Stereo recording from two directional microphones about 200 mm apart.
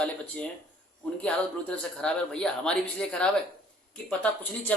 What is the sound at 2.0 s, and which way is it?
Speech, 5° left (ahead or behind).